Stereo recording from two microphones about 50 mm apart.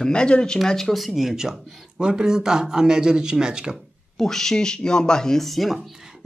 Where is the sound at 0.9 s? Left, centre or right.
Centre.